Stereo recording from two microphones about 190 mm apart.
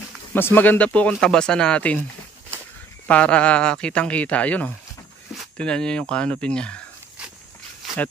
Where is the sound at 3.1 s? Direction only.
5° left (ahead or behind).